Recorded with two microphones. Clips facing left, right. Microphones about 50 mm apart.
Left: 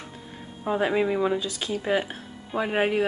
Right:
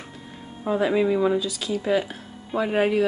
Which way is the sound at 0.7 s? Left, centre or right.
Left.